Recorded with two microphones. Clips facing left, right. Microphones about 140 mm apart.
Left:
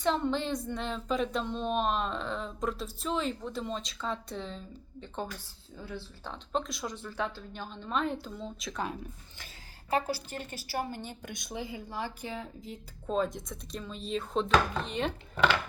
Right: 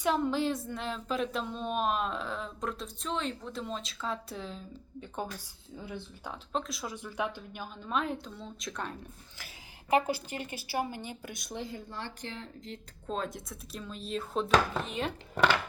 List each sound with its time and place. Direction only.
0.0 s speech: 5° right (ahead or behind)
6.5 s speech: centre (ahead or behind)
6.9 s speech: 15° right (ahead or behind); by 9.0 s centre (ahead or behind)
9.9 s speech: 20° right (ahead or behind)